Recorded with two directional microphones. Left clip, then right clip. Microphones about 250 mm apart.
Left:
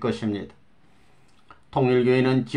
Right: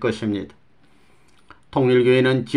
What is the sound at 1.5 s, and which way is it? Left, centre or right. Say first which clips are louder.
Speech: right 4 dB; right.